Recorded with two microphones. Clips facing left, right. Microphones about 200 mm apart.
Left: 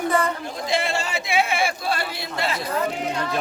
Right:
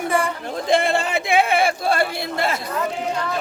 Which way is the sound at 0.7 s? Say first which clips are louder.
Right 6 dB; 55° right (ahead or behind).